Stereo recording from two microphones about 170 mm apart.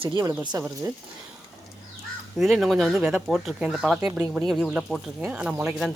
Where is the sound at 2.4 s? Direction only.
Centre (ahead or behind).